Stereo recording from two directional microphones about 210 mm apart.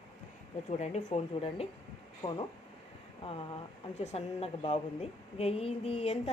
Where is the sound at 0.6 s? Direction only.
35° left (ahead or behind).